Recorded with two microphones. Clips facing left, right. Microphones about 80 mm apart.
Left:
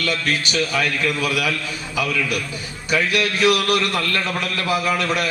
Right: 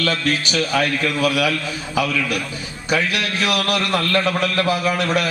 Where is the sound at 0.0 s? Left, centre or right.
Right.